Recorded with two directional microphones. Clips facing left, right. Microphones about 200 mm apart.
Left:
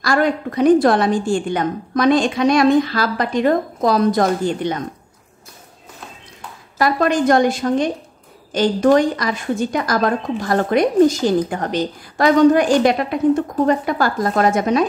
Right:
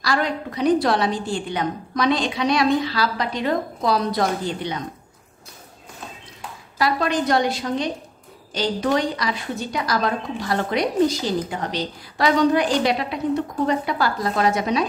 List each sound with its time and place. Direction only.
0.0 s a woman's voice: 50° left (ahead or behind)
6.8 s a woman's voice: 50° left (ahead or behind)